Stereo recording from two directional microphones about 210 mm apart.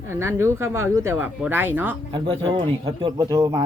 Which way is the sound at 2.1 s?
25° right (ahead or behind).